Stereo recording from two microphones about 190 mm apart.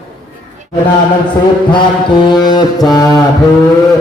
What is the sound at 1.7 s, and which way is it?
Mantra, 25° left (ahead or behind).